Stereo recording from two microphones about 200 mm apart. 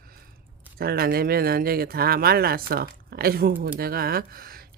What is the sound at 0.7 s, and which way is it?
Speech, 50° right (ahead or behind).